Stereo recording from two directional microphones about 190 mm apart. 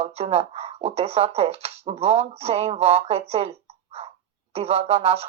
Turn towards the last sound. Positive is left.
turn(degrees=-30)  # may be behind; listen again after turning